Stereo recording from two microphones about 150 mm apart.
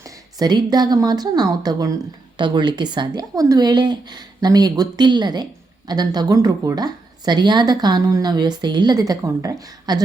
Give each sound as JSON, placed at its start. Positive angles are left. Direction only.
{"t": 0.3, "sound": "a woman's voice", "side_deg": -25}